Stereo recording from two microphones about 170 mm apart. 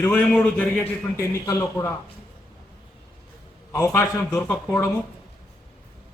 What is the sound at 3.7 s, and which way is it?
A man's voice, 15° left (ahead or behind).